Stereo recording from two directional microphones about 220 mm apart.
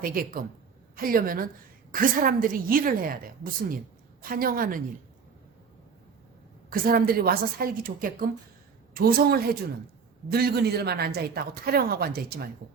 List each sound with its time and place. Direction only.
0.0 s a woman's voice: 40° right (ahead or behind)
6.7 s a woman's voice: 40° right (ahead or behind)